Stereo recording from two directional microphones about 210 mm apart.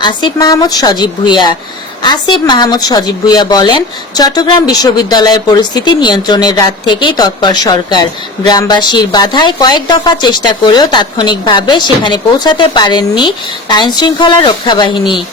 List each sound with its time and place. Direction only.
0.0 s speech: 20° left (ahead or behind)